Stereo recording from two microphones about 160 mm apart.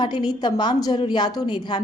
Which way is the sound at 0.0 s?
25° left (ahead or behind).